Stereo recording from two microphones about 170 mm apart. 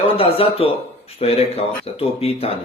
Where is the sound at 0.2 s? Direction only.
35° left (ahead or behind).